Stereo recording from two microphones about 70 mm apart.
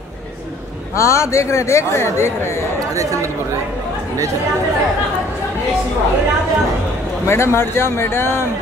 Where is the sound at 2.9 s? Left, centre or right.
Right.